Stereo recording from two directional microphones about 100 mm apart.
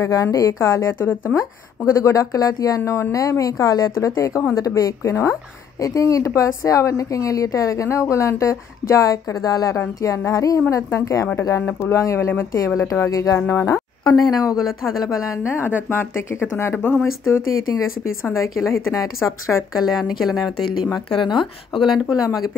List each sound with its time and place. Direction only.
0.0 s a woman's voice: 35° left (ahead or behind)
13.7 s speech: 5° left (ahead or behind)
15.0 s a woman's voice: 30° left (ahead or behind)
18.2 s speech: 30° left (ahead or behind)
19.7 s speech: 5° right (ahead or behind)
21.2 s a woman's voice: 50° left (ahead or behind)
21.9 s a woman's voice: 40° left (ahead or behind)